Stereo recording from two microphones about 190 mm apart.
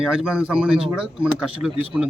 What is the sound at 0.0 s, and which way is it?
A man's voice, 5° right (ahead or behind).